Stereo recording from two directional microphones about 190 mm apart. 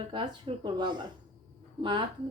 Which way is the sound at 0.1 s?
25° right (ahead or behind).